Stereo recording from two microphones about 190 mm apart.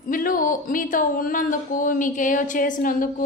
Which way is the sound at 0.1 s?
45° left (ahead or behind).